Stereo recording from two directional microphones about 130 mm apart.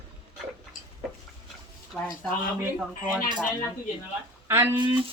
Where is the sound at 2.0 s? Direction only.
15° left (ahead or behind).